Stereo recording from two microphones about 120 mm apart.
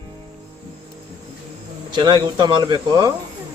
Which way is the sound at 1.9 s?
40° right (ahead or behind).